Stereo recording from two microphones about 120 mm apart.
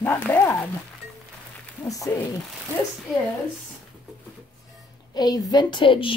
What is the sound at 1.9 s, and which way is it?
Speech, 30° left (ahead or behind).